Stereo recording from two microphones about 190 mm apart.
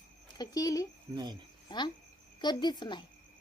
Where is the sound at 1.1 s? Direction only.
20° right (ahead or behind).